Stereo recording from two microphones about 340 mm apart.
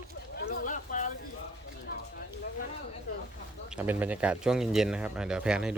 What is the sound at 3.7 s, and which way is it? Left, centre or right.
A man's voice, centre.